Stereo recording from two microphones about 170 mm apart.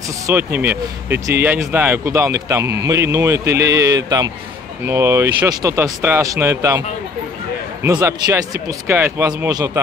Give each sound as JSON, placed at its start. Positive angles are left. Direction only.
{"t": 0.3, "sound": "speech", "side_deg": -10}
{"t": 7.8, "sound": "speech", "side_deg": -20}